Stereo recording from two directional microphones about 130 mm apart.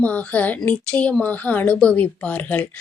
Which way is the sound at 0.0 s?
10° left (ahead or behind).